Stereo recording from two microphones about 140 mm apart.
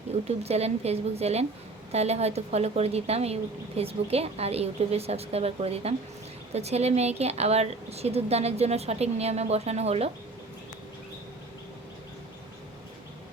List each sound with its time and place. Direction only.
0.1 s a woman's voice: 50° right (ahead or behind)